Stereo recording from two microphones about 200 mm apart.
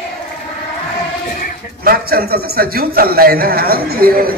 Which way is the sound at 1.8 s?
50° right (ahead or behind).